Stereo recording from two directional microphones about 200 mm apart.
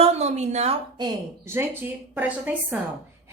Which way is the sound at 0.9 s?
15° right (ahead or behind).